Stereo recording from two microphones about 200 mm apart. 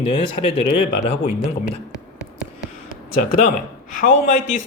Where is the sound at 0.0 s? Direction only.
25° left (ahead or behind).